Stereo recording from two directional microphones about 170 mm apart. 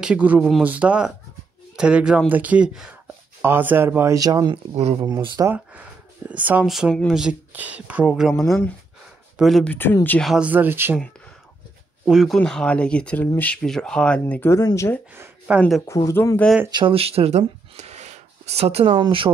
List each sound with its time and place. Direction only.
0.0 s speech: 5° right (ahead or behind); by 4.6 s 20° right (ahead or behind)
4.7 s speech: 40° right (ahead or behind)
5.0 s speech: 25° right (ahead or behind)
5.5 s speech: 10° right (ahead or behind)
9.8 s speech: 10° left (ahead or behind)
10.3 s speech: 10° right (ahead or behind)
12.1 s speech: centre (ahead or behind); by 15.0 s 20° left (ahead or behind)
15.1 s a sound: 10° right (ahead or behind)
15.9 s speech: 15° left (ahead or behind)
16.7 s speech: 30° right (ahead or behind)